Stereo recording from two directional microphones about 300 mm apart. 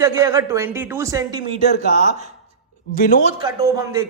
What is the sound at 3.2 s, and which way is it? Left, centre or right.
Speech, centre.